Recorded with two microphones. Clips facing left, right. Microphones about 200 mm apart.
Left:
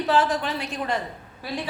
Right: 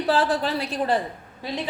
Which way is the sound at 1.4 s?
20° right (ahead or behind).